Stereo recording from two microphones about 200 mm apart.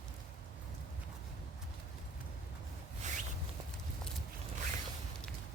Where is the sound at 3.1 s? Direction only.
35° right (ahead or behind).